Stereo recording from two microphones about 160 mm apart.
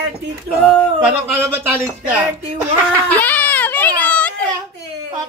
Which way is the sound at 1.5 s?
10° right (ahead or behind).